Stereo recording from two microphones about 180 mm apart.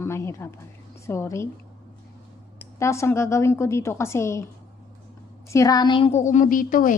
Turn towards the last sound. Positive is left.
turn(degrees=50)  # may be behind; listen again after turning